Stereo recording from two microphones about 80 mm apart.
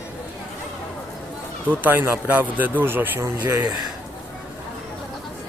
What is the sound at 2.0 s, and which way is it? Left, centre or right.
A man's voice, right.